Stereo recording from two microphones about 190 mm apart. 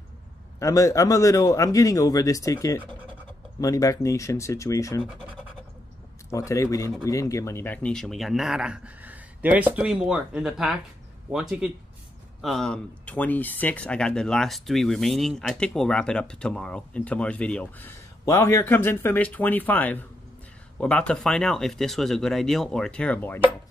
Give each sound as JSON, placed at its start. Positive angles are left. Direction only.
{"t": 0.6, "sound": "a man's voice", "side_deg": 15}
{"t": 6.3, "sound": "a man's voice", "side_deg": 15}